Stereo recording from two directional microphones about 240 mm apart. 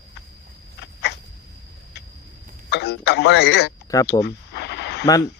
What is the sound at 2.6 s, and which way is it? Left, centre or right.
Speech, left.